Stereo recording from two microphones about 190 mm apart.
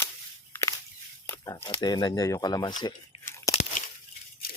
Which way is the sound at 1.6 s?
20° left (ahead or behind).